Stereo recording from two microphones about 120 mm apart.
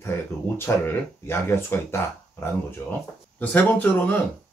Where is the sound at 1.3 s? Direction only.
20° left (ahead or behind).